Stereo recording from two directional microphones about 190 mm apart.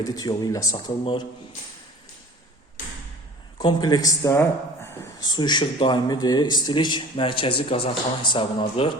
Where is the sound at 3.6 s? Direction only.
25° left (ahead or behind).